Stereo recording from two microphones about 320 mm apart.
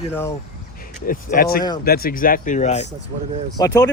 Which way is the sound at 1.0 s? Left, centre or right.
Left.